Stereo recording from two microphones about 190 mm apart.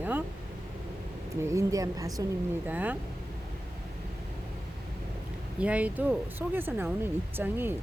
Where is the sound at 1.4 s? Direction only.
15° right (ahead or behind).